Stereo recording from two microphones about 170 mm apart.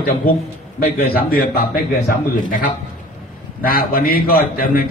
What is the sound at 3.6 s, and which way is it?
A man's voice, 60° left (ahead or behind).